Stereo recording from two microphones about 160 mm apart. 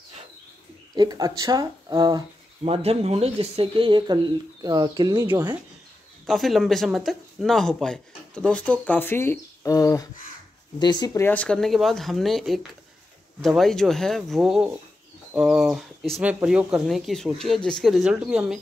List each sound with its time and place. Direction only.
0.9 s speech: 25° right (ahead or behind)
6.2 s speech: centre (ahead or behind); by 11.2 s 25° left (ahead or behind)
11.2 s speech: 5° left (ahead or behind)